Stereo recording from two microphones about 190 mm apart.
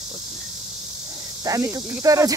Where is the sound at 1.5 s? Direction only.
15° right (ahead or behind).